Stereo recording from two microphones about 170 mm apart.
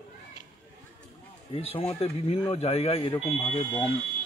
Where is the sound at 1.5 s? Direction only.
35° left (ahead or behind).